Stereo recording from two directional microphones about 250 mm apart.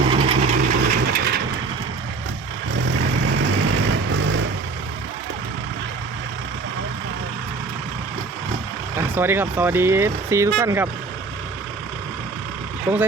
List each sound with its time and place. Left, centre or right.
0.1 s vehicle: right
0.8 s vehicle: right
3.0 s vehicle: right
9.0 s speech: centre